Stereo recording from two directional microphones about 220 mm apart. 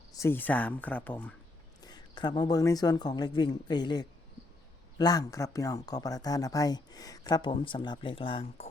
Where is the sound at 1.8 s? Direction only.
20° left (ahead or behind).